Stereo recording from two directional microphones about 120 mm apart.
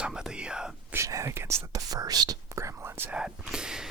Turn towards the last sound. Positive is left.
turn(degrees=-5)  # may be behind; listen again after turning